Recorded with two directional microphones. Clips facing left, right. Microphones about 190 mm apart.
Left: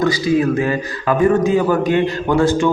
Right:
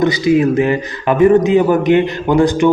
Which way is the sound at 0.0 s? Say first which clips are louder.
Right 3 dB; 20° right (ahead or behind).